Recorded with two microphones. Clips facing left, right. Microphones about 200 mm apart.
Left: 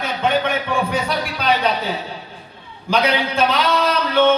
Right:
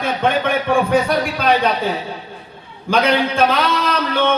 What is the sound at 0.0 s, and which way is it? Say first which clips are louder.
A man's voice: right 2 dB; 50° right (ahead or behind).